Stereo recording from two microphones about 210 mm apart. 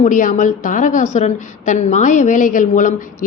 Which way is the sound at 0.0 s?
40° left (ahead or behind).